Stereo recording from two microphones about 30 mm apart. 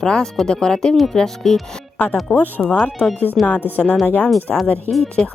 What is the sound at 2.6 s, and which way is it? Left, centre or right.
Speech, left.